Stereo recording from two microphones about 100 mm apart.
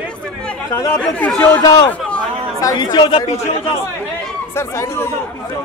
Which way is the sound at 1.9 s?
10° left (ahead or behind).